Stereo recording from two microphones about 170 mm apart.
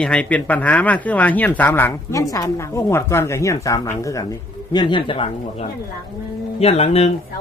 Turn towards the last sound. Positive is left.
turn(degrees=35)  # may be behind; listen again after turning